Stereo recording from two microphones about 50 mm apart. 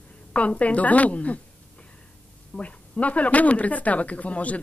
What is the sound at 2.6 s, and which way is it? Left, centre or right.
Speech, left.